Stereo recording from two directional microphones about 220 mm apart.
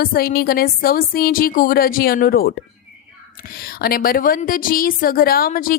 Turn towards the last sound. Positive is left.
turn(degrees=40)  # may be behind; listen again after turning